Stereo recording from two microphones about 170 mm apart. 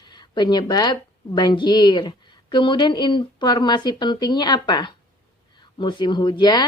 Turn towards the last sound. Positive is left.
turn(degrees=25)  # may be behind; listen again after turning